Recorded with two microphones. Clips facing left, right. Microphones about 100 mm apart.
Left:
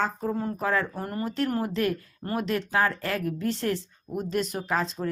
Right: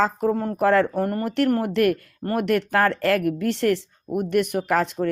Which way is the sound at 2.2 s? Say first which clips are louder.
Right 7 dB; 60° right (ahead or behind).